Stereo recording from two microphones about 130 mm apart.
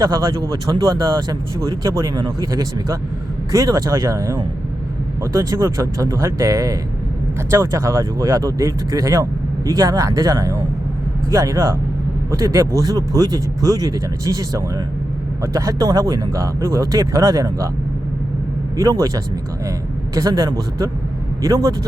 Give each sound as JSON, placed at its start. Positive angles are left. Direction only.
{"t": 0.0, "sound": "speech", "side_deg": -25}
{"t": 18.8, "sound": "speech", "side_deg": -25}